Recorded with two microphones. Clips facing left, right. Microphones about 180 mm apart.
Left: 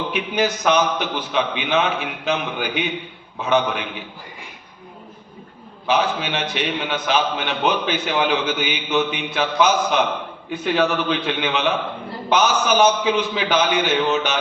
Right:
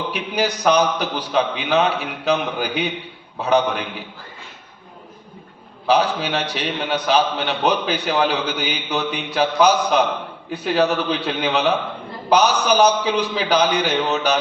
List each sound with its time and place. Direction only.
0.1 s a man's voice: 35° right (ahead or behind)
5.9 s a man's voice: 35° right (ahead or behind)